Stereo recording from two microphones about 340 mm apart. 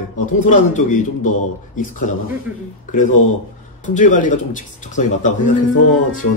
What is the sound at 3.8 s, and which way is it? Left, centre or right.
A man's voice, left.